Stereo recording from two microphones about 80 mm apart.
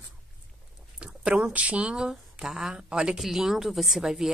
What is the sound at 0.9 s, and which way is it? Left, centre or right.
Speech, centre.